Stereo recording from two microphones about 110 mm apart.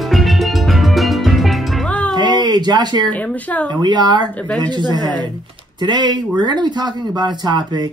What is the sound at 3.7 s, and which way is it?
Speech, 40° right (ahead or behind).